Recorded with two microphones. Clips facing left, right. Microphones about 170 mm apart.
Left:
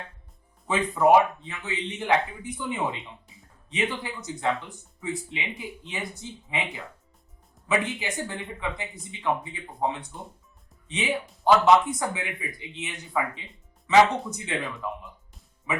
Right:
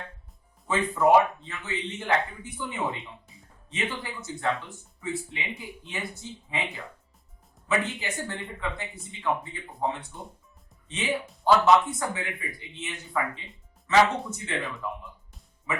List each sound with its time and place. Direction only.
1.0 s speech: 20° left (ahead or behind)